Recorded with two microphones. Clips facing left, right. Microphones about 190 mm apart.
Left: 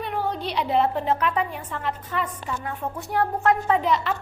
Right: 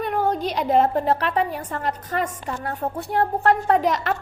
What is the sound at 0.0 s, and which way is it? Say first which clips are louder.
A woman's voice: right 5 dB; 45° right (ahead or behind).